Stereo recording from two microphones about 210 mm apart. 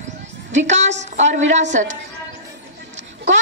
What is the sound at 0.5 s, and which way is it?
A woman's voice, 35° right (ahead or behind).